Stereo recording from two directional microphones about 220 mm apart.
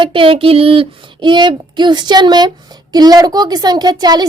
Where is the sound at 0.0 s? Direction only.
25° right (ahead or behind).